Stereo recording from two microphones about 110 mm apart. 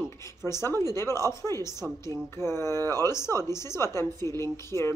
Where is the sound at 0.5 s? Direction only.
25° left (ahead or behind).